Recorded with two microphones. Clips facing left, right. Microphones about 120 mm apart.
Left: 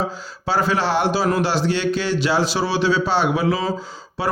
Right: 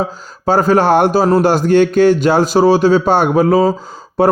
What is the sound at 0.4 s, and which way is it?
A man's voice, 45° right (ahead or behind).